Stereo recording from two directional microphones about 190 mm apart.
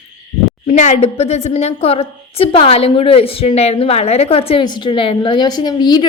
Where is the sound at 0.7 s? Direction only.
40° left (ahead or behind).